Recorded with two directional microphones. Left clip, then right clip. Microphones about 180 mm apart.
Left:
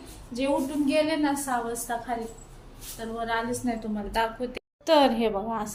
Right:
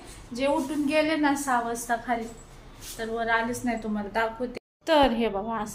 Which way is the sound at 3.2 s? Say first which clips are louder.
Right 3 dB; 30° right (ahead or behind).